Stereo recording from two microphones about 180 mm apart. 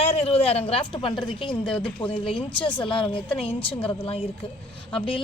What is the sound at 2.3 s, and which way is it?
Speech, 30° left (ahead or behind).